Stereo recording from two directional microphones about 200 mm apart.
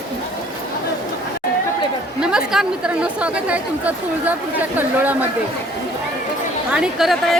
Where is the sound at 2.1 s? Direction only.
5° right (ahead or behind).